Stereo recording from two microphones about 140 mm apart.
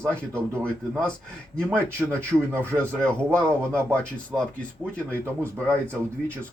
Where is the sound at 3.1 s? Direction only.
5° left (ahead or behind).